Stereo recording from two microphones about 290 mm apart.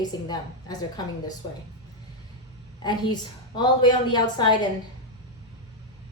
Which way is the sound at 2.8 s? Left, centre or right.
Centre.